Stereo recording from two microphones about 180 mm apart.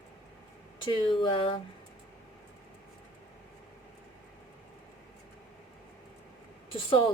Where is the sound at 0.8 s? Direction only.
30° left (ahead or behind).